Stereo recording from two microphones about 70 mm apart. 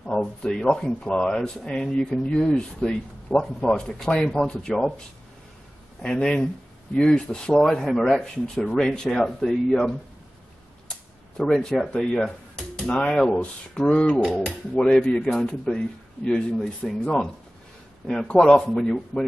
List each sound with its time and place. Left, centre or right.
0.0 s speech: centre
6.0 s speech: centre
11.4 s speech: centre
12.0 s dishes: centre
12.9 s speech: centre